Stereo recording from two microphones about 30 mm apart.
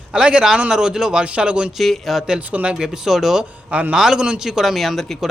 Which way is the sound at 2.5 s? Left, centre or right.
Right.